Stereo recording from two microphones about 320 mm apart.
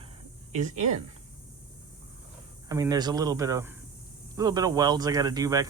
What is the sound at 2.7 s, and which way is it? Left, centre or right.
Speech, centre.